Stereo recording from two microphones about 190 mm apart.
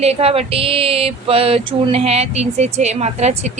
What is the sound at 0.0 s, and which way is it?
Speech, 30° right (ahead or behind).